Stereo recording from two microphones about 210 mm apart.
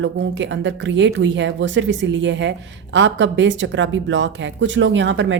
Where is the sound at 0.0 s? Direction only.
60° right (ahead or behind).